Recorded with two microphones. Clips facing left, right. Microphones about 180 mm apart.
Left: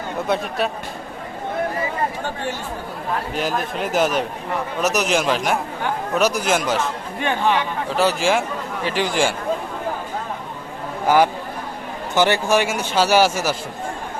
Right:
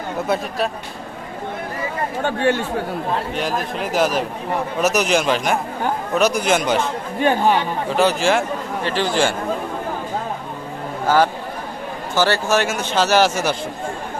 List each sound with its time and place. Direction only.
0.3 s a man's voice: 5° right (ahead or behind)
2.2 s speech: 70° right (ahead or behind)
3.3 s a man's voice: centre (ahead or behind)
7.2 s speech: 40° right (ahead or behind)
7.9 s a man's voice: 5° left (ahead or behind)
11.0 s speech: 15° left (ahead or behind)